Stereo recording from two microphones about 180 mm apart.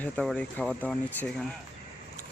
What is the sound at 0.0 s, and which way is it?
Speech, 5° left (ahead or behind).